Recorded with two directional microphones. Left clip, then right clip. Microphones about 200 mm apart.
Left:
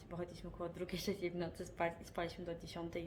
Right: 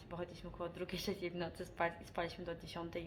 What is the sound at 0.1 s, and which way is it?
A woman's voice, 15° left (ahead or behind).